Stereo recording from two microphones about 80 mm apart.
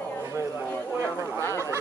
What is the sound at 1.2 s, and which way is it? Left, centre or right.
Honk, right.